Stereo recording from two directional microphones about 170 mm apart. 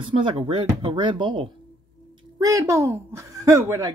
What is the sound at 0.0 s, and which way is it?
A woman's voice, 30° right (ahead or behind).